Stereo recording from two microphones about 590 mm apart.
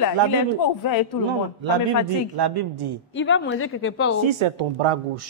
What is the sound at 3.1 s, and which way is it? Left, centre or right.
Speech, centre.